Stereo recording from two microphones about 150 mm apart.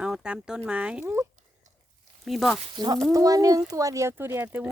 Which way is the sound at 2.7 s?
30° right (ahead or behind).